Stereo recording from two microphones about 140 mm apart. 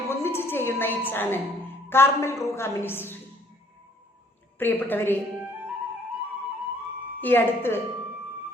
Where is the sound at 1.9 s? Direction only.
15° left (ahead or behind).